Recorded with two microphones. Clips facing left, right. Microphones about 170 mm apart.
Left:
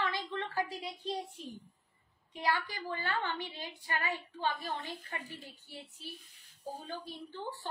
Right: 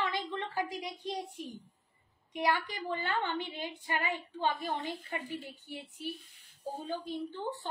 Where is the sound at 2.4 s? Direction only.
20° right (ahead or behind).